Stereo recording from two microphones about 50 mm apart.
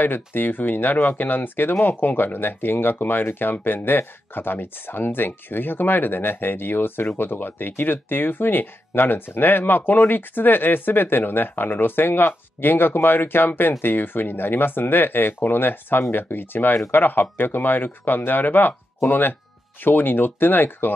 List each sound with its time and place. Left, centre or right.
0.0 s speech: left
1.7 s speech: left